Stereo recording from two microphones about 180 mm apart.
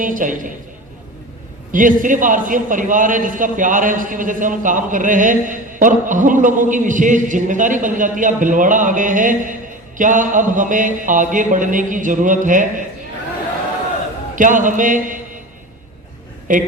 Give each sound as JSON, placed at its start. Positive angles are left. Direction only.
{"t": 0.0, "sound": "a man's voice", "side_deg": -45}
{"t": 1.7, "sound": "a man's voice", "side_deg": -50}
{"t": 14.3, "sound": "a man's voice", "side_deg": -45}
{"t": 16.5, "sound": "a man's voice", "side_deg": -45}